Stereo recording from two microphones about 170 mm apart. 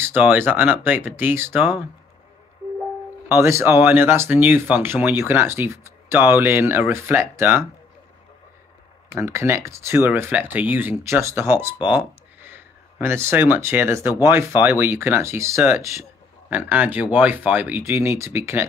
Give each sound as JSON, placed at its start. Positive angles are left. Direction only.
{"t": 0.0, "sound": "speech", "side_deg": -10}
{"t": 3.3, "sound": "speech", "side_deg": -15}
{"t": 9.1, "sound": "speech", "side_deg": -15}